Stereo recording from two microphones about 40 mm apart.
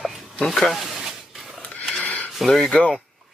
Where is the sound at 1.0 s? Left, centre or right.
Centre.